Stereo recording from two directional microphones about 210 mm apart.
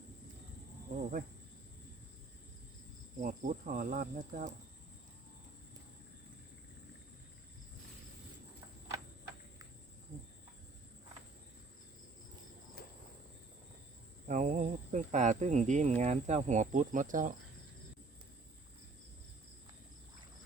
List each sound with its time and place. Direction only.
3.2 s cricket: 35° right (ahead or behind)
14.3 s speech: 35° right (ahead or behind)